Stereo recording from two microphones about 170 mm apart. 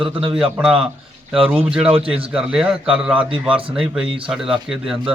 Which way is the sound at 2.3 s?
5° right (ahead or behind).